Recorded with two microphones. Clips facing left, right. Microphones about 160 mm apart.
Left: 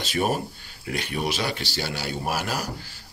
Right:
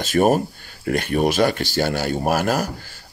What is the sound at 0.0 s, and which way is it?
Speech, 45° right (ahead or behind).